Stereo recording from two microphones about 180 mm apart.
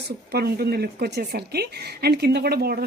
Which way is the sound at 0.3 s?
60° right (ahead or behind).